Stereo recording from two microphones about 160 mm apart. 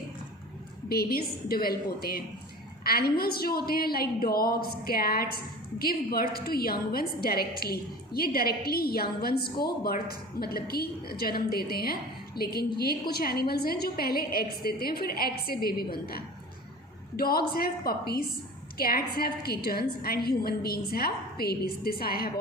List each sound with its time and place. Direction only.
0.9 s a woman's voice: 75° left (ahead or behind)